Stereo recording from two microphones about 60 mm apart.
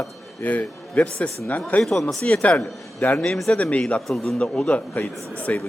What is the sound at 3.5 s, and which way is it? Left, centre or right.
A man's voice, left.